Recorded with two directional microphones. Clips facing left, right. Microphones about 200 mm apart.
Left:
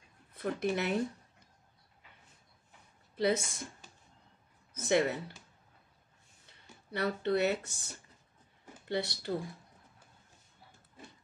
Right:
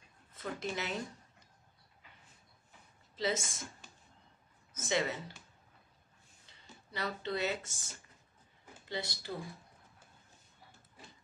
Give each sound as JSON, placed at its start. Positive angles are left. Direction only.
{"t": 0.3, "sound": "speech", "side_deg": 60}
{"t": 3.2, "sound": "speech", "side_deg": 60}
{"t": 4.7, "sound": "speech", "side_deg": 60}
{"t": 6.9, "sound": "speech", "side_deg": 60}